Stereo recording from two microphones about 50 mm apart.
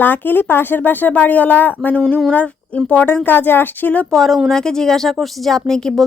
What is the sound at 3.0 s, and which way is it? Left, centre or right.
Speech, left.